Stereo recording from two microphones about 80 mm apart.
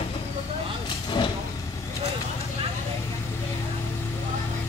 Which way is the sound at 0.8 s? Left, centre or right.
Left.